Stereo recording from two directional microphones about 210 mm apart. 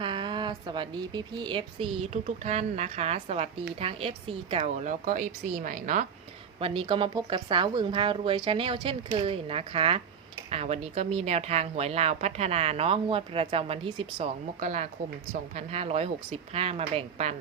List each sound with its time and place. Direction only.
0.0 s a woman's voice: 25° right (ahead or behind); by 6.1 s 40° right (ahead or behind)
6.6 s a woman's voice: 25° right (ahead or behind)
14.2 s a woman's voice: 35° right (ahead or behind)